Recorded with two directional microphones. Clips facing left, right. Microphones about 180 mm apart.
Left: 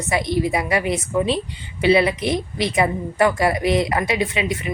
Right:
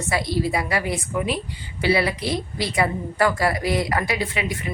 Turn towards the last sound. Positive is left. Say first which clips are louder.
# left 4 dB
turn(degrees=20)  # may be behind; listen again after turning